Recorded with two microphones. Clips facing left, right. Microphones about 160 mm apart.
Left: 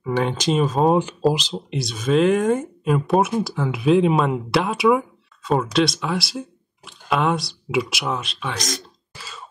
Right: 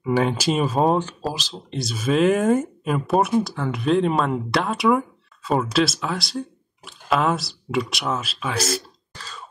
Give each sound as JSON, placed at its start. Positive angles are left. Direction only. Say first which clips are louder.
{"t": 0.0, "sound": "speech", "louder": "right 1 dB", "side_deg": -5}
{"t": 0.9, "sound": "speech", "louder": "left 6 dB", "side_deg": 15}
{"t": 1.7, "sound": "speech", "louder": "left 1 dB", "side_deg": 0}
{"t": 9.1, "sound": "a sound", "louder": "even", "side_deg": 10}